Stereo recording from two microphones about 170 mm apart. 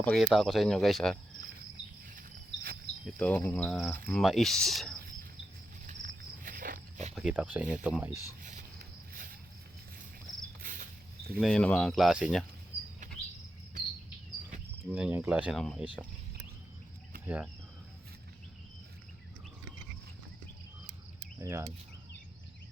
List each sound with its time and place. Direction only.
0.0 s speech: centre (ahead or behind)
2.0 s a sound: 60° right (ahead or behind)
3.2 s speech: 10° left (ahead or behind)
5.8 s wild animals: 50° right (ahead or behind)
7.2 s speech: 5° right (ahead or behind)
10.6 s a sound: 55° right (ahead or behind)
11.3 s speech: 5° left (ahead or behind)
14.8 s speech: 5° right (ahead or behind)
17.2 s speech: 5° right (ahead or behind)
21.4 s speech: 15° right (ahead or behind)